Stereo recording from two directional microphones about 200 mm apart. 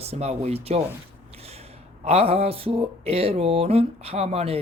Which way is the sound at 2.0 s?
30° right (ahead or behind).